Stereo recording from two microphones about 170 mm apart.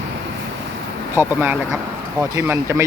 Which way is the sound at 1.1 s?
10° right (ahead or behind).